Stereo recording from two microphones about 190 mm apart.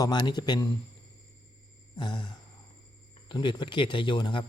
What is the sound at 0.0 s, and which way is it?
Speech, 20° left (ahead or behind).